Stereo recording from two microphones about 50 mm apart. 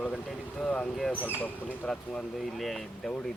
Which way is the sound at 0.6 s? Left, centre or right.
Left.